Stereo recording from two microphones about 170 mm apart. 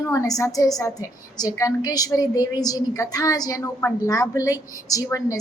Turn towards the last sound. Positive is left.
turn(degrees=20)  # may be behind; listen again after turning